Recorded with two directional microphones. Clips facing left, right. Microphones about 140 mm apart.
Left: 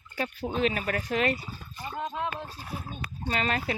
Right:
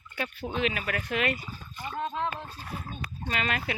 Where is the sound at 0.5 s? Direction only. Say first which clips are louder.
Left 2 dB; 35° left (ahead or behind).